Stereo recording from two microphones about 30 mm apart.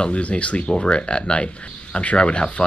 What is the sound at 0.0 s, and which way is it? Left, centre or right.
Speech, left.